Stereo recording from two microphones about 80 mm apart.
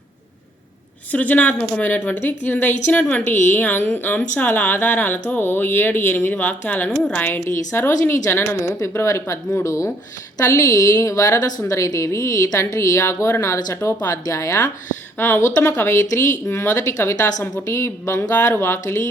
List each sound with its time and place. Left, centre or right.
1.1 s a woman's voice: centre
7.5 s a woman's voice: left
15.2 s a woman's voice: left
17.7 s speech: left